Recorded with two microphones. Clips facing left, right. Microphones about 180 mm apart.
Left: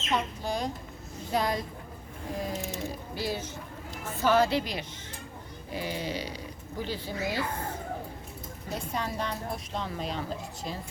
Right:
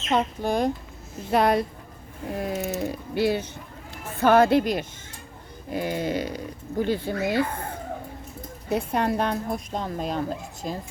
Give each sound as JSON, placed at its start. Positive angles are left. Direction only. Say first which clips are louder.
{"t": 0.1, "sound": "a woman's voice", "louder": "right 7 dB", "side_deg": -55}
{"t": 8.7, "sound": "a woman's voice", "louder": "right 9 dB", "side_deg": -60}